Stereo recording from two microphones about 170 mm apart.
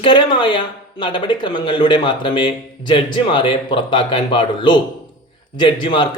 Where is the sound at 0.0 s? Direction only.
30° left (ahead or behind).